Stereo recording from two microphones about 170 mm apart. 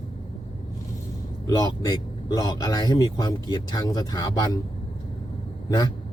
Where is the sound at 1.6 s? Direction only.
20° left (ahead or behind).